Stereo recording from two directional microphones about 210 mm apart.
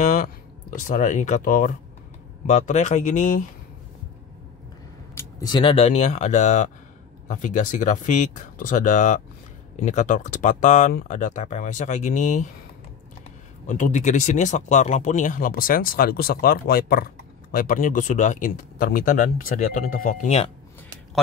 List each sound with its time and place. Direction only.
0.0 s speech: 40° left (ahead or behind)
5.1 s speech: 20° left (ahead or behind); by 12.4 s 35° left (ahead or behind)
13.7 s speech: 35° left (ahead or behind)